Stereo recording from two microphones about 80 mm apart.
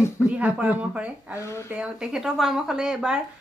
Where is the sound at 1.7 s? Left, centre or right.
Centre.